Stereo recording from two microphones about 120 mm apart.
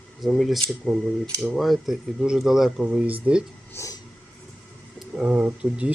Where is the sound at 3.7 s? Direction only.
25° left (ahead or behind).